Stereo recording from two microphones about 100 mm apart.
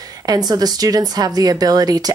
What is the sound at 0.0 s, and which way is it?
Speech, 40° right (ahead or behind).